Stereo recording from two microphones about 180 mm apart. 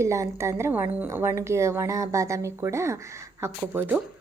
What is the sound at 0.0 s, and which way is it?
A woman's voice, 15° right (ahead or behind).